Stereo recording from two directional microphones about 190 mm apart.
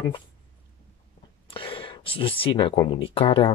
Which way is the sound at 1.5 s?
30° left (ahead or behind).